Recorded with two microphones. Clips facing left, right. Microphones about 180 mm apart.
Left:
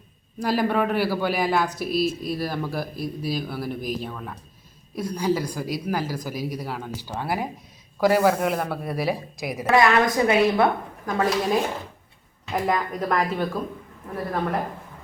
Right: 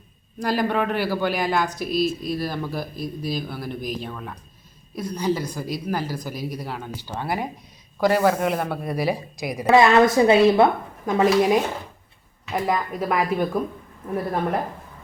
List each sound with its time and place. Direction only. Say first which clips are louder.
0.3 s a woman's voice: even; 5° left (ahead or behind)
9.7 s a woman's voice: right 4 dB; 25° right (ahead or behind)
12.5 s speech: even; centre (ahead or behind)